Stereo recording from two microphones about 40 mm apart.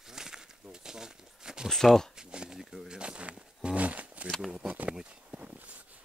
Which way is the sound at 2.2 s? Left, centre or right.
Centre.